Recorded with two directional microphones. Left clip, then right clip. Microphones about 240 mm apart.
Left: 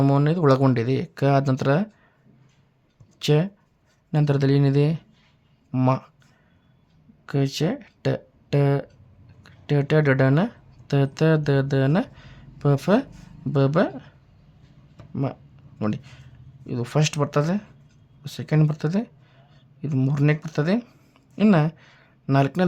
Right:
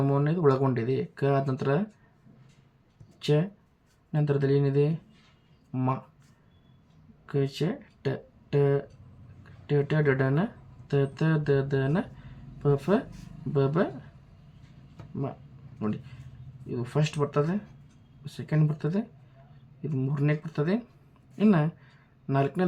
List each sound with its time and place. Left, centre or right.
0.0 s speech: left
3.2 s speech: left
7.3 s speech: left
15.1 s speech: left